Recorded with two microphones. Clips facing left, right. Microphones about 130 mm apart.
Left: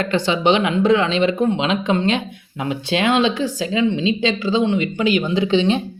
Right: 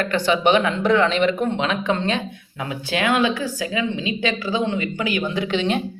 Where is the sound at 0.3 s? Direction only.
20° left (ahead or behind).